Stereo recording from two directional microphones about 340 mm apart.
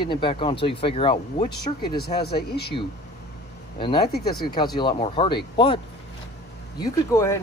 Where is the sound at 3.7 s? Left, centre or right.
Centre.